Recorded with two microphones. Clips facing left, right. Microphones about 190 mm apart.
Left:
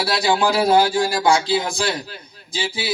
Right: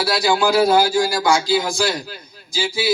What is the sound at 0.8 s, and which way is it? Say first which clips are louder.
Speech: even; 30° right (ahead or behind).